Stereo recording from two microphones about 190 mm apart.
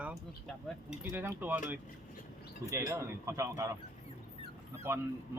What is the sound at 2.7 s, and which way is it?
A man's voice, 15° right (ahead or behind).